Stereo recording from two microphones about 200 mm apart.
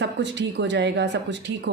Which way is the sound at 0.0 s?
60° right (ahead or behind).